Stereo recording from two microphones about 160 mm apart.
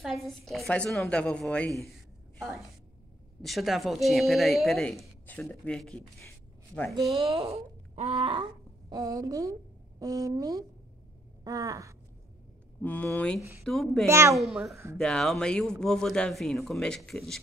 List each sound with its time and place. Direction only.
0.0 s speech: centre (ahead or behind)
1.9 s a sound: centre (ahead or behind)
3.4 s speech: centre (ahead or behind)
7.1 s speech: 40° right (ahead or behind); by 10.6 s 20° right (ahead or behind)
11.4 s a sound: 20° right (ahead or behind)
12.8 s speech: 10° left (ahead or behind)
13.4 s speech: 20° right (ahead or behind)
13.7 s speech: 5° left (ahead or behind)
14.0 s speech: 15° right (ahead or behind)
14.3 s speech: centre (ahead or behind)